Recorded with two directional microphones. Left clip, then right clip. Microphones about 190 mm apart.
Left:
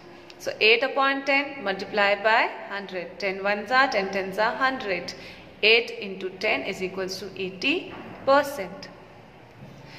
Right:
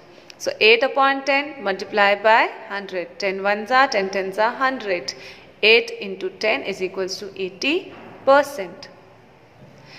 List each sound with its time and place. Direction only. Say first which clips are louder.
0.4 s a woman's voice: right 5 dB; 25° right (ahead or behind)